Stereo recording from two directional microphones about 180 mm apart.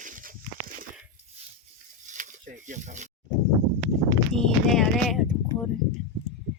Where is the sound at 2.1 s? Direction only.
45° right (ahead or behind).